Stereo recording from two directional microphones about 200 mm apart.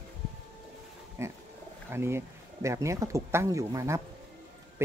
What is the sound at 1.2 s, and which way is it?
Speech, 10° right (ahead or behind).